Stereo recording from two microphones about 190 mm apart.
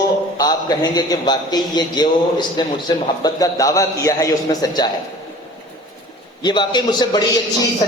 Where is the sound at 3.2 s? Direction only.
20° left (ahead or behind).